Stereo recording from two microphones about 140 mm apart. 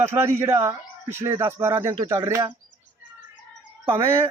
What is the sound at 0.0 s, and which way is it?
Speech, 15° right (ahead or behind).